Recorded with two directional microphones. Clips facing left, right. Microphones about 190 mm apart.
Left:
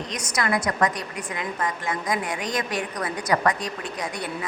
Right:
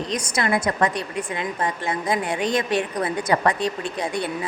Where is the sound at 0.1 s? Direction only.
25° right (ahead or behind).